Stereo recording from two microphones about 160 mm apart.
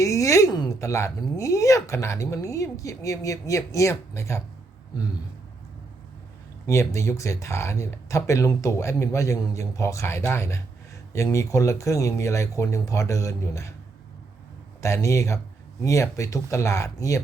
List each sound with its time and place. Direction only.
0.0 s speech: 20° left (ahead or behind)
6.7 s speech: 20° left (ahead or behind)
14.8 s speech: 20° left (ahead or behind)